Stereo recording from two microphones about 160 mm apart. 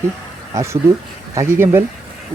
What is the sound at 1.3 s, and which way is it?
Speech, 15° right (ahead or behind).